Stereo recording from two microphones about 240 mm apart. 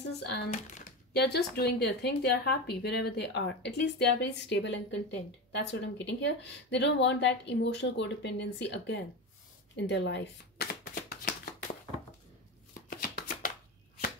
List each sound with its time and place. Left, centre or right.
0.0 s speech: left
0.5 s speech: left
9.8 s shuffling cards: left